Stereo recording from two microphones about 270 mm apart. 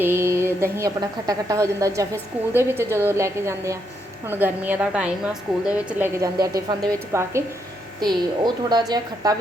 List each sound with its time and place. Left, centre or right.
0.0 s a woman's voice: centre